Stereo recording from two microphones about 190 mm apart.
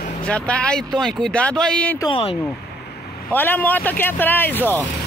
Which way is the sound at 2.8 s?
60° left (ahead or behind).